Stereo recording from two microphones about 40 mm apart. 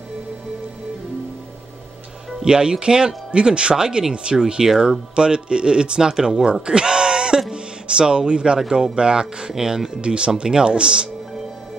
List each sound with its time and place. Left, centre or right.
2.4 s speech: centre
5.1 s speech: right
6.3 s a sound: centre
7.5 s speech: right
9.5 s speech: centre
10.0 s speech: right